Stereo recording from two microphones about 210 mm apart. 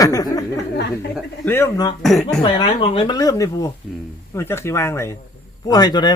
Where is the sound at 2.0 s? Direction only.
Centre (ahead or behind).